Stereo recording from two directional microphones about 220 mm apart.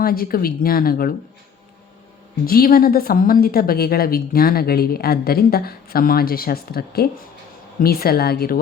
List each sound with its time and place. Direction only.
0.0 s speech: 40° left (ahead or behind)
2.5 s a woman's voice: 40° left (ahead or behind)